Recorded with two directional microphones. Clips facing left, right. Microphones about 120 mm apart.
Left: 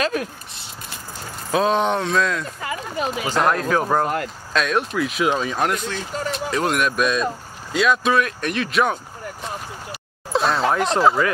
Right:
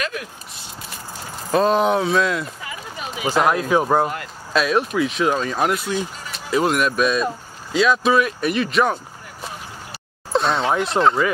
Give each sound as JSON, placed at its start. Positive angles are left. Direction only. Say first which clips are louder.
{"t": 0.0, "sound": "speech", "louder": "left 5 dB", "side_deg": 40}
{"t": 1.5, "sound": "speech", "louder": "right 2 dB", "side_deg": 0}
{"t": 2.6, "sound": "a sound", "louder": "left 7 dB", "side_deg": 45}
{"t": 3.3, "sound": "speech", "louder": "right 3 dB", "side_deg": -5}
{"t": 10.3, "sound": "speech", "louder": "even", "side_deg": 0}